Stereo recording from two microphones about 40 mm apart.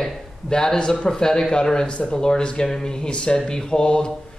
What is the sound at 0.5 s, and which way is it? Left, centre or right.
Speech, centre.